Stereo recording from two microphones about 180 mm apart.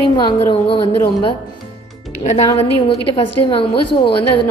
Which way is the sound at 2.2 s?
35° left (ahead or behind).